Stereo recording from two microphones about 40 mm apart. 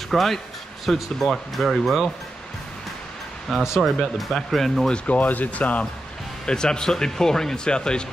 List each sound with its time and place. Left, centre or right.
0.1 s speech: centre
3.4 s speech: centre
5.0 s speech: left
6.4 s speech: left